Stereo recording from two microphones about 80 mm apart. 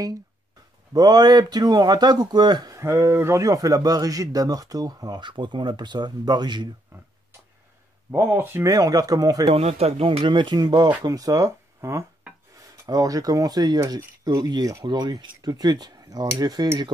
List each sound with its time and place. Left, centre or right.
0.9 s speech: right
2.7 s a man's voice: right
6.9 s speech: right
8.1 s speech: right
8.6 s a man's voice: right
10.0 s speech: right
11.1 s speech: right
12.8 s a man's voice: right
14.9 s speech: right